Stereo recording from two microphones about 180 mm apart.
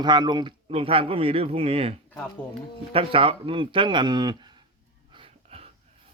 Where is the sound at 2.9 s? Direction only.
30° right (ahead or behind).